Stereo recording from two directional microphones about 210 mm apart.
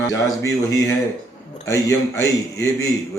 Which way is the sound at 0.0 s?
15° left (ahead or behind).